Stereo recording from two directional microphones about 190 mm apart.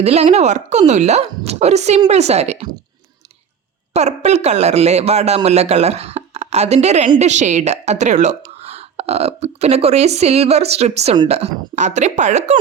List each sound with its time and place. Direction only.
0.0 s speech: 35° right (ahead or behind)
3.9 s speech: 35° right (ahead or behind)